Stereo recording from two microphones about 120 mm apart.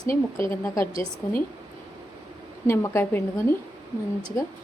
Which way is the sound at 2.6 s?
25° left (ahead or behind).